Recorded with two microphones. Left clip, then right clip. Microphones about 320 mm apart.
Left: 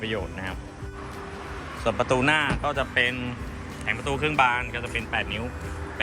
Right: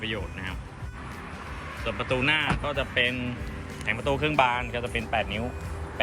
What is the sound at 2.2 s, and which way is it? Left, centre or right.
Speech, centre.